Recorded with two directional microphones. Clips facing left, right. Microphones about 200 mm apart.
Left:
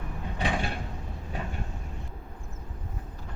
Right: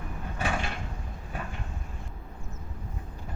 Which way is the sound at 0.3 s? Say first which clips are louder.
Left 1 dB; 15° left (ahead or behind).